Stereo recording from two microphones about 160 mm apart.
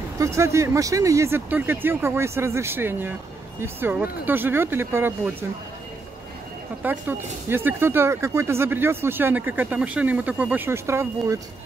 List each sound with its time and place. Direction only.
0.2 s speech: 20° right (ahead or behind)
6.8 s speech: 10° right (ahead or behind)